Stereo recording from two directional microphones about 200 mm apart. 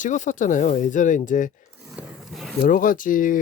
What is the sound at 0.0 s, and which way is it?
Speech, 40° left (ahead or behind).